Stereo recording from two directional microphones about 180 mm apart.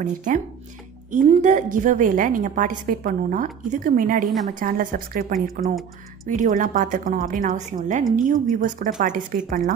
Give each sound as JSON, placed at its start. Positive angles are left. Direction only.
{"t": 0.0, "sound": "a woman's voice", "side_deg": -45}
{"t": 5.6, "sound": "speech", "side_deg": 0}
{"t": 6.2, "sound": "a woman's voice", "side_deg": -45}